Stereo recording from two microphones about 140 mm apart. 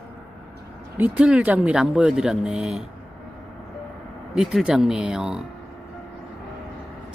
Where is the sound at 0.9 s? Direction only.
10° right (ahead or behind).